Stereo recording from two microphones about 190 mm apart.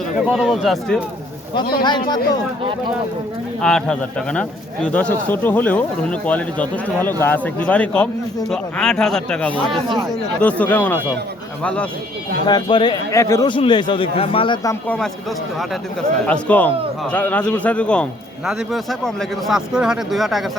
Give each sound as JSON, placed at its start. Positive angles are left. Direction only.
{"t": 0.3, "sound": "a man's voice", "side_deg": 0}
{"t": 1.8, "sound": "speech", "side_deg": 25}
{"t": 3.6, "sound": "a man's voice", "side_deg": 5}
{"t": 12.5, "sound": "speech", "side_deg": 25}
{"t": 14.8, "sound": "a man's voice", "side_deg": 5}
{"t": 16.2, "sound": "a man's voice", "side_deg": 5}